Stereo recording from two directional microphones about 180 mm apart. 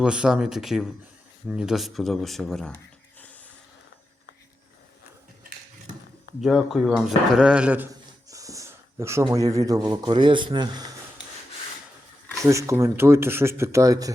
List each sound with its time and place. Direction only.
0.0 s speech: 5° right (ahead or behind)
2.7 s a sound: 10° left (ahead or behind)
6.4 s speech: centre (ahead or behind)
7.9 s speech: 20° right (ahead or behind)
12.5 s speech: 15° right (ahead or behind)